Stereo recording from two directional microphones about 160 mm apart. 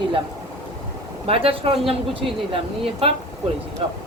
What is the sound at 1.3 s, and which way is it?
Speech, 35° right (ahead or behind).